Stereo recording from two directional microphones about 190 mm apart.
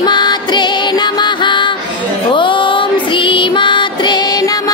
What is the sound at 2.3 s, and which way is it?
Music, 25° left (ahead or behind).